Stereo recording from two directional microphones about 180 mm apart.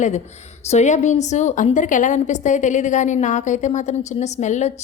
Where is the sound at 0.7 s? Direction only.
40° left (ahead or behind).